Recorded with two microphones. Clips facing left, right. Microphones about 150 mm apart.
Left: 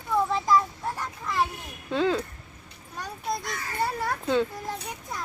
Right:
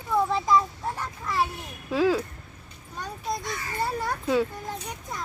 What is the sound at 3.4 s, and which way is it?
Children playing, centre (ahead or behind).